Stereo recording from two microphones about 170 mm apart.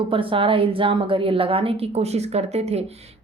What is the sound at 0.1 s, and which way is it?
A woman's voice, 30° right (ahead or behind).